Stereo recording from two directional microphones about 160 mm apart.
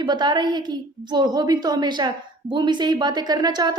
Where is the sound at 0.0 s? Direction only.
25° right (ahead or behind).